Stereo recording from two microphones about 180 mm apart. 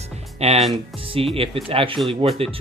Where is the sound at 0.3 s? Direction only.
35° right (ahead or behind).